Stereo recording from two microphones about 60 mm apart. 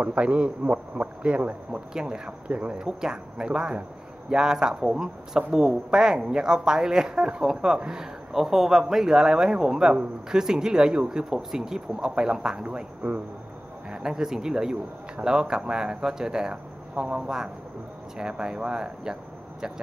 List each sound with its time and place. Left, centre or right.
0.0 s speech: centre